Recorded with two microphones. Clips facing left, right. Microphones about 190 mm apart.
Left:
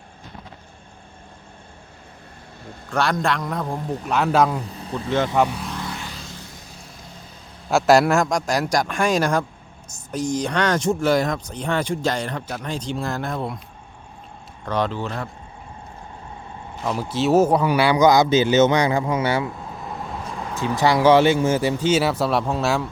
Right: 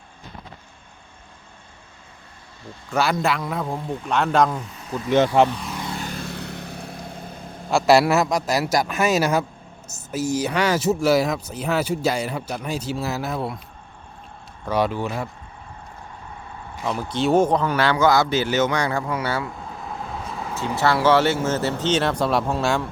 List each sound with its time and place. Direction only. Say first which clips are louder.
2.9 s a man's voice: even; 5° right (ahead or behind)
4.6 s speech: even; 35° left (ahead or behind)
5.1 s speech: right 3 dB; 20° right (ahead or behind)
5.5 s a man's voice: even; 5° left (ahead or behind)
6.0 s vehicle: right 6 dB; 55° right (ahead or behind)
7.7 s a man's voice: left 1 dB; centre (ahead or behind)
14.6 s speech: right 2 dB; 10° right (ahead or behind)
16.8 s a man's voice: left 1 dB; 5° left (ahead or behind)
19.9 s vehicle: even; centre (ahead or behind)
20.6 s a man's voice: left 2 dB; 15° left (ahead or behind)